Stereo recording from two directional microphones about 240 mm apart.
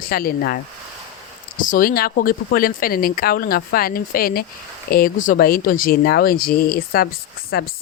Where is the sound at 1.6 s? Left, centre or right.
Left.